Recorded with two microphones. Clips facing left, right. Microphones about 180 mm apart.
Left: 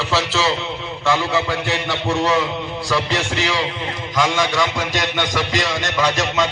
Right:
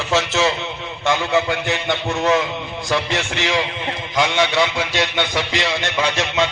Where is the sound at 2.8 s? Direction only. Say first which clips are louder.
Even; 35° left (ahead or behind).